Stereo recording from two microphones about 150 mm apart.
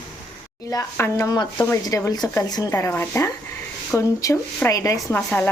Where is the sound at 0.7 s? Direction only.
20° left (ahead or behind).